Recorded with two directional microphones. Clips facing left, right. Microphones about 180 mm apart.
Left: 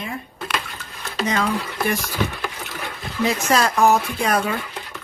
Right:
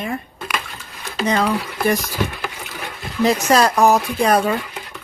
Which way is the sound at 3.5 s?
40° right (ahead or behind).